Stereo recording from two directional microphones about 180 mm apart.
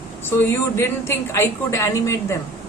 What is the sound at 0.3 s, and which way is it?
A woman's voice, 15° left (ahead or behind).